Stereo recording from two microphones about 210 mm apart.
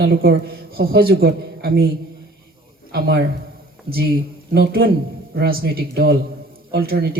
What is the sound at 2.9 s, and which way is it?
A man's voice, 50° right (ahead or behind).